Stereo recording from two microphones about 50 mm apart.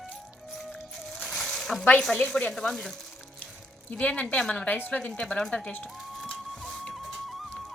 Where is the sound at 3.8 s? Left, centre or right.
Left.